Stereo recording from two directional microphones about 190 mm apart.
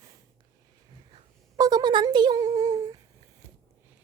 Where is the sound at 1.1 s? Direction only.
20° right (ahead or behind).